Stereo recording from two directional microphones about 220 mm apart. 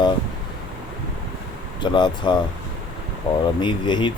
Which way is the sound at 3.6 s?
20° left (ahead or behind).